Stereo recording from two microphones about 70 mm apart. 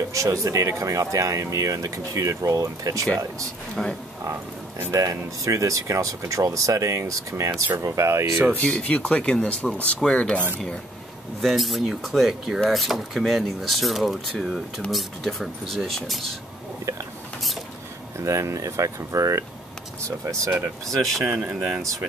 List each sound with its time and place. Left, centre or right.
0.1 s speech: right
3.8 s speech: centre
4.9 s speech: right
8.5 s speech: centre
11.4 s speech: centre
18.1 s speech: right
21.3 s speech: right